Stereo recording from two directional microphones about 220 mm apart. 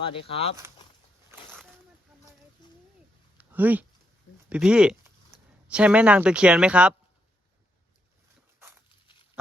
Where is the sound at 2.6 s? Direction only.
20° left (ahead or behind).